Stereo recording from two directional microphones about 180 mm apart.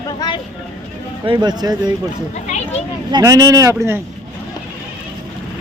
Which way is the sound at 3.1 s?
20° right (ahead or behind).